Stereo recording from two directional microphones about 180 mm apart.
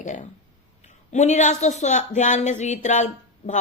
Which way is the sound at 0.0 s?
45° left (ahead or behind).